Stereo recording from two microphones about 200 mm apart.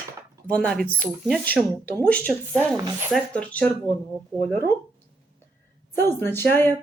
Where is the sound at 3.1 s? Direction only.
5° left (ahead or behind).